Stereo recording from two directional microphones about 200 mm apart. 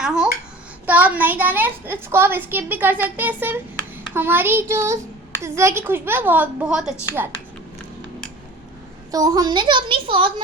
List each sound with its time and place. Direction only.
0.0 s a sound: 5° right (ahead or behind)
0.9 s a woman's voice: 10° right (ahead or behind)
9.1 s a child's voice: 20° right (ahead or behind)